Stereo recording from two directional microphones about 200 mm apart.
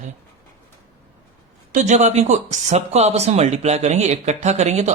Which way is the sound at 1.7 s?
35° right (ahead or behind).